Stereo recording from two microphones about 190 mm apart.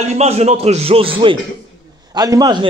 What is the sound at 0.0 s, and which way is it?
Speech, 35° right (ahead or behind).